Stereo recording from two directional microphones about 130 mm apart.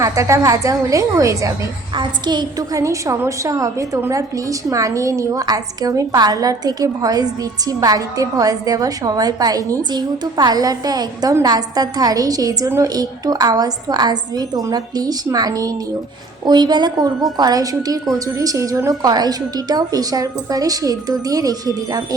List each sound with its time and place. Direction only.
0.0 s a woman's voice: 25° right (ahead or behind)